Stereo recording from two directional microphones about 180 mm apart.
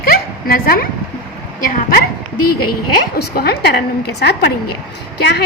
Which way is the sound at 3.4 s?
60° left (ahead or behind).